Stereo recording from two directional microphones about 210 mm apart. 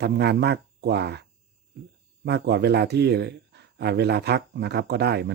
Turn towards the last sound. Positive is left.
turn(degrees=-50)  # may be behind; listen again after turning